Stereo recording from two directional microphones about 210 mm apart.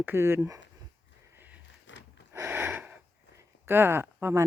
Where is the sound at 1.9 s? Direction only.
60° left (ahead or behind).